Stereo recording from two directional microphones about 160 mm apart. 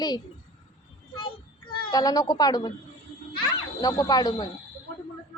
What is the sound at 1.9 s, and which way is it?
Speech, 25° left (ahead or behind).